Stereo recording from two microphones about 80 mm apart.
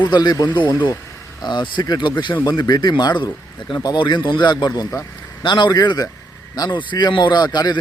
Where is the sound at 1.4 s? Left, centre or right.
Left.